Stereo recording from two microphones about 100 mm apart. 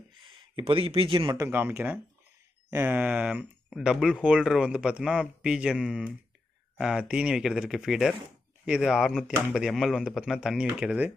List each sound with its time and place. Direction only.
0.1 s a sound: 55° right (ahead or behind)
0.6 s speech: 75° right (ahead or behind); by 1.4 s 50° right (ahead or behind)
1.4 s speech: 20° right (ahead or behind)